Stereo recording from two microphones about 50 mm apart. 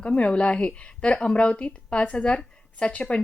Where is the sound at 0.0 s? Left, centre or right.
Left.